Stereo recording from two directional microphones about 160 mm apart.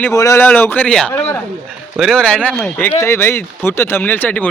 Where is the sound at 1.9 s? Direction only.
Centre (ahead or behind).